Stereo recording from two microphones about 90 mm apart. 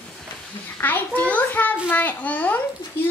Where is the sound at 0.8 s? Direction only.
20° left (ahead or behind).